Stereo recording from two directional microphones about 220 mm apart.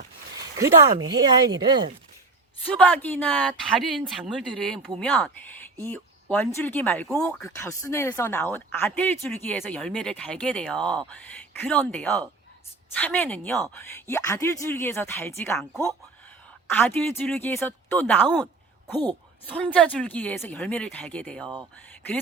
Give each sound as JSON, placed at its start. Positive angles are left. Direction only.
{"t": 0.6, "sound": "speech", "side_deg": -15}
{"t": 2.7, "sound": "a woman's voice", "side_deg": 5}
{"t": 16.7, "sound": "a woman's voice", "side_deg": 10}
{"t": 19.5, "sound": "speech", "side_deg": 5}
{"t": 21.4, "sound": "speech", "side_deg": -20}